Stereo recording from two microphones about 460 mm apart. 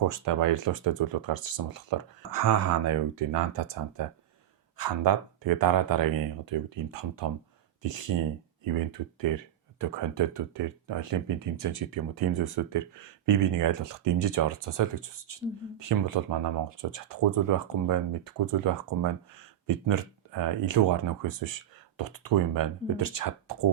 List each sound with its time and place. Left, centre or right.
0.0 s speech: right
9.3 s speech: right